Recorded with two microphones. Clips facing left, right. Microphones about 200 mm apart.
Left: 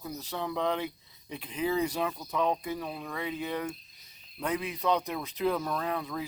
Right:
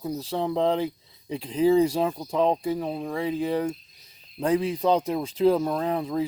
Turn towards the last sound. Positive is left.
turn(degrees=-30)  # may be behind; listen again after turning